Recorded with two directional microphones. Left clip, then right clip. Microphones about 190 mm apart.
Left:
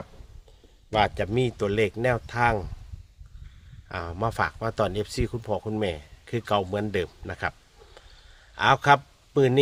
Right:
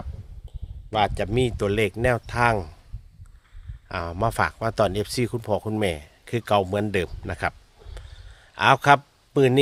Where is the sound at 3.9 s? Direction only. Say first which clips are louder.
Right 4 dB; 25° right (ahead or behind).